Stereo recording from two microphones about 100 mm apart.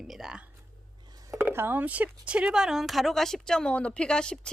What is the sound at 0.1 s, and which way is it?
Speech, 5° right (ahead or behind).